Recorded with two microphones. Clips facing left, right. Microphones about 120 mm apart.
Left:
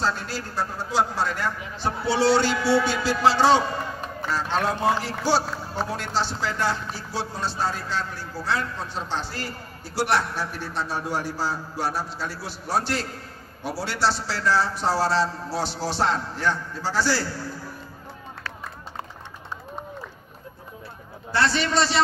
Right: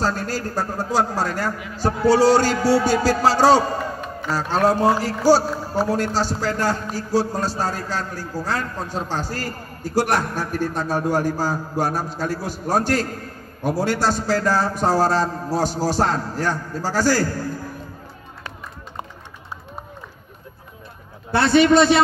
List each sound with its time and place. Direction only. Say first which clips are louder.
0.0 s a man's voice: right 4 dB; 40° right (ahead or behind)
21.3 s a man's voice: right 9 dB; 55° right (ahead or behind)